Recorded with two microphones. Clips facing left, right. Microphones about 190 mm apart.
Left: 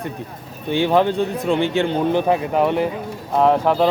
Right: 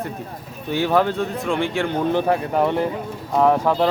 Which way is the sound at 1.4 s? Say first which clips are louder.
Left 3 dB; 35° left (ahead or behind).